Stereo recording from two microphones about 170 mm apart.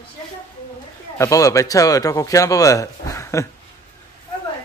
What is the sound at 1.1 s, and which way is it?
Speech, 20° left (ahead or behind).